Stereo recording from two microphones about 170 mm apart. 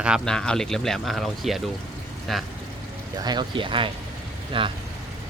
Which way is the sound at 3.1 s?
25° right (ahead or behind).